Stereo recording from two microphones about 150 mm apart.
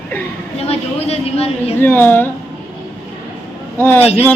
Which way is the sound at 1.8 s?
15° left (ahead or behind).